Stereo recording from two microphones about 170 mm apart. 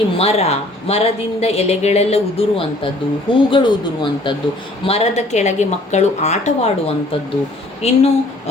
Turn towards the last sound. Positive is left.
turn(degrees=40)  # may be behind; listen again after turning